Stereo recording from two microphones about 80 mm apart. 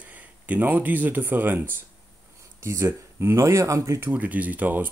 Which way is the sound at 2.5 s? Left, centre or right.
Right.